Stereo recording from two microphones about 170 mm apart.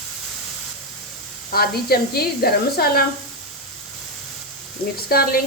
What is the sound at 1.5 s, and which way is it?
Speech, 65° left (ahead or behind).